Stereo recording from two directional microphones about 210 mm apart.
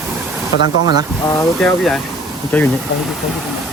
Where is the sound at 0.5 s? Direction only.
55° left (ahead or behind).